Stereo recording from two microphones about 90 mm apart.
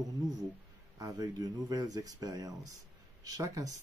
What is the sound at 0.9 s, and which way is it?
Speech, 45° right (ahead or behind).